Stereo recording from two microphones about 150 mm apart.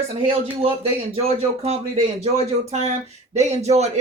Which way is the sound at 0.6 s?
40° right (ahead or behind).